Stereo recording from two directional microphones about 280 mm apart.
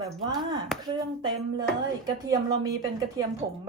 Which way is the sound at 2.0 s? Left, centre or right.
Centre.